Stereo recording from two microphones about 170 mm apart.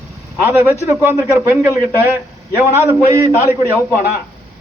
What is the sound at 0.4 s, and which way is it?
A man's voice, 10° right (ahead or behind).